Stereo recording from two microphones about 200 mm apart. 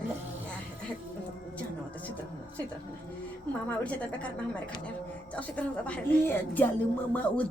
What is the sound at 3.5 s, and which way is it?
Speech, 5° left (ahead or behind).